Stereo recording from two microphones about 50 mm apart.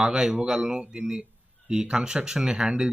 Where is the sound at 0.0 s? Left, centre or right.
Centre.